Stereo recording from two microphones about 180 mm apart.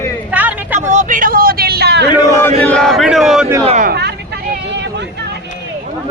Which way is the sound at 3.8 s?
65° right (ahead or behind).